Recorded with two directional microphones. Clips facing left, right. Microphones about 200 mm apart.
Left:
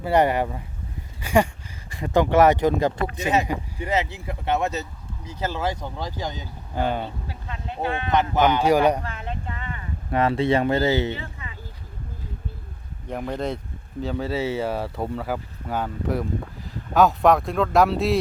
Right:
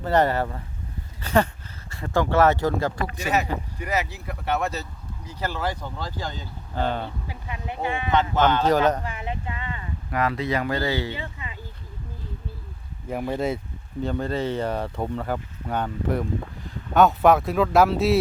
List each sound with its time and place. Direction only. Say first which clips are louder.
0.0 s speech: left 1 dB; 15° left (ahead or behind)
1.2 s a sound: left 1 dB; 10° left (ahead or behind)
1.9 s speech: left 3 dB; 15° left (ahead or behind)
3.8 s speech: left 3 dB; 25° left (ahead or behind)
7.3 s speech: right 1 dB; 15° right (ahead or behind)
8.1 s speech: left 1 dB; 15° left (ahead or behind)
9.0 s speech: right 1 dB; 15° right (ahead or behind)
10.1 s speech: left 5 dB; 30° left (ahead or behind)
11.1 s speech: left 1 dB; 20° right (ahead or behind)
13.1 s speech: right 2 dB; 5° right (ahead or behind)